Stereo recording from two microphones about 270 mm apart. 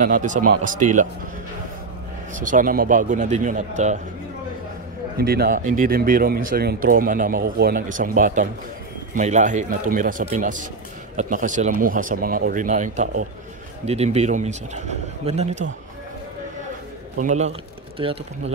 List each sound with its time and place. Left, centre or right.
0.0 s speech: right
2.4 s speech: right
5.1 s speech: right
17.2 s speech: right